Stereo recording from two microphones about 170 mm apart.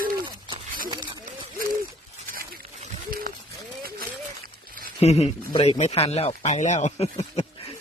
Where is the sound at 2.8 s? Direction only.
55° right (ahead or behind).